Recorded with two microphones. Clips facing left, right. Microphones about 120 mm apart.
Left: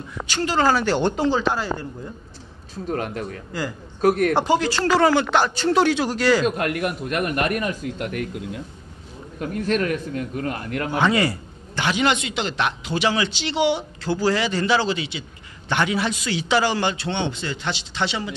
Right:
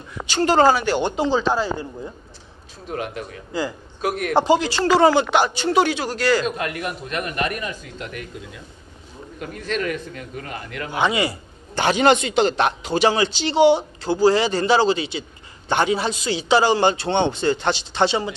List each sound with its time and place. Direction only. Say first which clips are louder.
0.7 s speech: right 1 dB; 10° right (ahead or behind)
1.1 s speech: right 1 dB; 20° right (ahead or behind)
2.9 s a man's voice: left 2 dB; 45° left (ahead or behind)
4.3 s speech: right 2 dB; 25° right (ahead or behind)
5.8 s speech: even; 5° right (ahead or behind)
6.4 s a man's voice: left 3 dB; 50° left (ahead or behind)
9.5 s a man's voice: left 3 dB; 50° left (ahead or behind)
11.0 s speech: even; 15° right (ahead or behind)
11.7 s speech: right 5 dB; 40° right (ahead or behind)